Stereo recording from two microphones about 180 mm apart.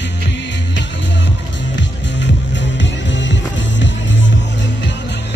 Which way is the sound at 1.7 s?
80° left.